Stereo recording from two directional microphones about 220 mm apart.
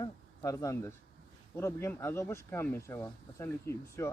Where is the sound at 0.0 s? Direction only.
15° left (ahead or behind).